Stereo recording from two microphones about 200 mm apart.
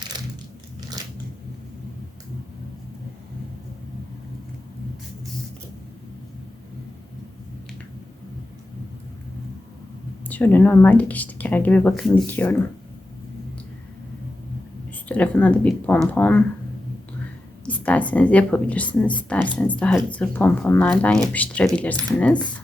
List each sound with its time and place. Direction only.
1.0 s scissors: 20° right (ahead or behind)
10.2 s speech: 10° left (ahead or behind)
15.0 s speech: 5° left (ahead or behind)
17.7 s speech: 5° left (ahead or behind)